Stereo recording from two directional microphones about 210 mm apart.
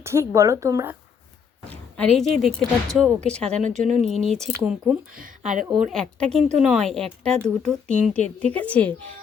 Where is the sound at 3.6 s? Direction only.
35° right (ahead or behind).